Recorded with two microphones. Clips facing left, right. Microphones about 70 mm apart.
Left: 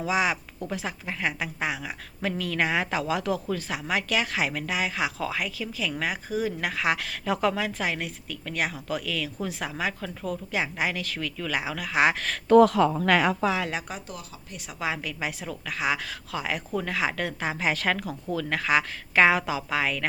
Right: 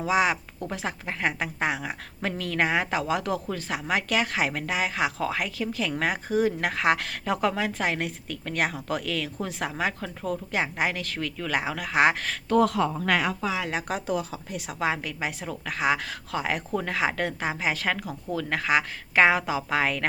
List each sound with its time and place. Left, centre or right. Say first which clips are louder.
0.0 s a woman's voice: right 2 dB; right
12.5 s speech: left 6 dB; left
12.8 s speech: left 3 dB; left
13.9 s speech: right 7 dB; right
14.7 s a woman's voice: right 2 dB; right